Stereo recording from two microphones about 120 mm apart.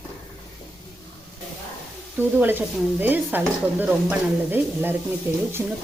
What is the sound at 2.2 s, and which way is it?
Speech, 15° right (ahead or behind).